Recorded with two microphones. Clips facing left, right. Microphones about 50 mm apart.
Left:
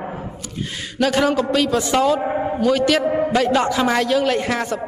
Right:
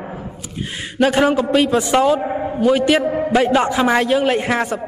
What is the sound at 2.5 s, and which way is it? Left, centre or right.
A woman's voice, right.